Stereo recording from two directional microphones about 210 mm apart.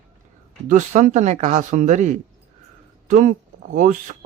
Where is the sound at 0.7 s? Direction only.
35° right (ahead or behind).